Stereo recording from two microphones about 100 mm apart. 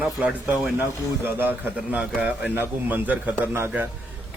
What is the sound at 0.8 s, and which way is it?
A man's voice, 20° right (ahead or behind).